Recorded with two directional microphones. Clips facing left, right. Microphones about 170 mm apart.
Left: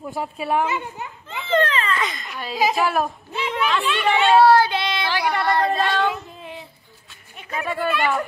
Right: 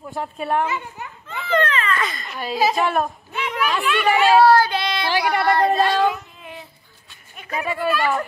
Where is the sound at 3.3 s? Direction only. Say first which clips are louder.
Left 1 dB; 30° left (ahead or behind).